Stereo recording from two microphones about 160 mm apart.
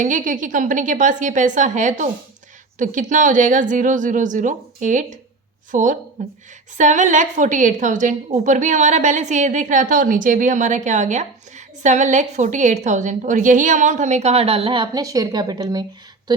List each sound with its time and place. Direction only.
0.0 s a woman's voice: 55° right (ahead or behind); by 16.3 s 25° right (ahead or behind)